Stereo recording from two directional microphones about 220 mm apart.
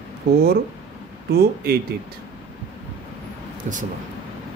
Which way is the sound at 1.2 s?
45° right (ahead or behind).